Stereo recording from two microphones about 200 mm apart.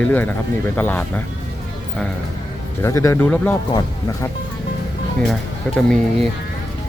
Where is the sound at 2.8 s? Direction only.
15° left (ahead or behind).